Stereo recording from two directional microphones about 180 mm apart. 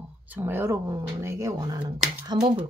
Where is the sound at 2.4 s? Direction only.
35° right (ahead or behind).